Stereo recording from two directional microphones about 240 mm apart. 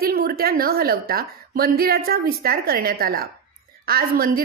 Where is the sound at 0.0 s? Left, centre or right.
Right.